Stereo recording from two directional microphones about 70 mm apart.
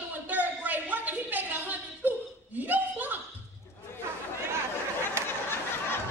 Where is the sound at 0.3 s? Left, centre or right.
Right.